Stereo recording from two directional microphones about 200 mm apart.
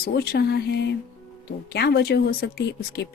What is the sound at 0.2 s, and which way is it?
Speech, 55° left (ahead or behind).